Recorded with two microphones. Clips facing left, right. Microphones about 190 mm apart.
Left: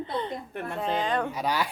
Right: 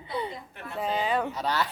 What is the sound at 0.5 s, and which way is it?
Speech, 55° left (ahead or behind).